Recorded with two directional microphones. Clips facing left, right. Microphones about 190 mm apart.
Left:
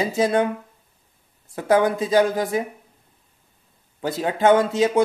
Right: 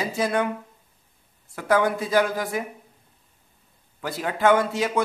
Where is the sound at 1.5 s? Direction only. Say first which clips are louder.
Left 3 dB; 20° left (ahead or behind).